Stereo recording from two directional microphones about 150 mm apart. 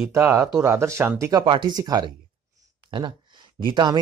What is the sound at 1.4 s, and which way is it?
Speech, 35° right (ahead or behind).